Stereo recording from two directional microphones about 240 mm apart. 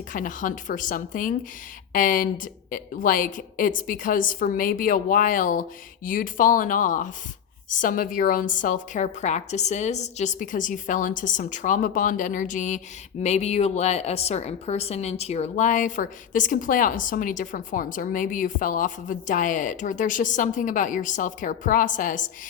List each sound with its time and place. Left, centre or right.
0.1 s a woman's voice: left